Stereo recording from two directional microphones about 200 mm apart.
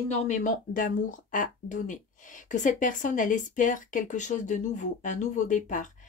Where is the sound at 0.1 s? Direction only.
35° left (ahead or behind).